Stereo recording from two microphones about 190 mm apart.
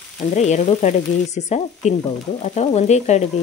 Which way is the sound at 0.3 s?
35° left (ahead or behind).